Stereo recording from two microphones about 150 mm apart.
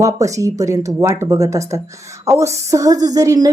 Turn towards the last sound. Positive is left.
turn(degrees=-25)  # may be behind; listen again after turning